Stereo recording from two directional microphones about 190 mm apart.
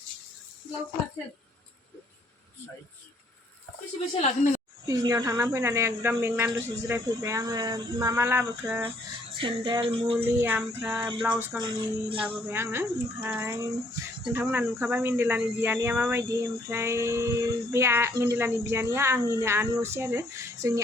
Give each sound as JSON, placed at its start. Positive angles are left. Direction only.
{"t": 4.1, "sound": "speech", "side_deg": 35}
{"t": 4.9, "sound": "speech", "side_deg": -20}
{"t": 9.4, "sound": "music", "side_deg": -25}
{"t": 10.2, "sound": "speech", "side_deg": -10}
{"t": 11.6, "sound": "music", "side_deg": -25}
{"t": 12.5, "sound": "speech", "side_deg": -15}